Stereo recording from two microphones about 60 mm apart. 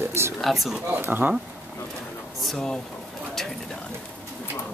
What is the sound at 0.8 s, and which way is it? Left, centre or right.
Speech, right.